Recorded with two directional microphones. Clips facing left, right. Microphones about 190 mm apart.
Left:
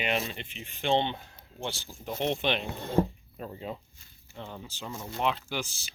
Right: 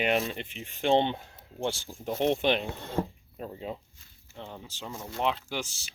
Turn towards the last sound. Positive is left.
turn(degrees=-75)  # may be behind; listen again after turning